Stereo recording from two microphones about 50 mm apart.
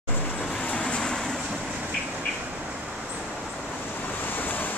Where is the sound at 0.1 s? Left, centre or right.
Left.